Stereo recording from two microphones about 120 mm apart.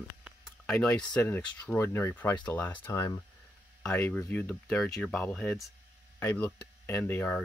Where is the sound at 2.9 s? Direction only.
25° left (ahead or behind).